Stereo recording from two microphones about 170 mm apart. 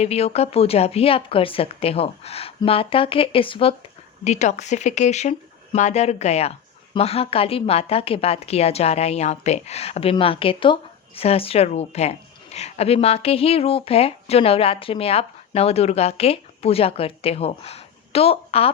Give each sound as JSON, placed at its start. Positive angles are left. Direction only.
{"t": 0.0, "sound": "a woman's voice", "side_deg": 40}